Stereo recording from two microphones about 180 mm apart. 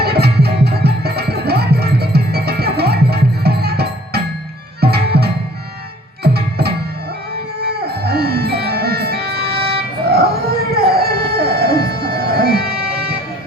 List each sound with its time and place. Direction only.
0.0 s music: 60° right (ahead or behind)